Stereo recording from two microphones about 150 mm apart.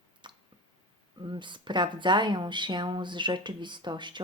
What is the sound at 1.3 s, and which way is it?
Speech, 30° right (ahead or behind).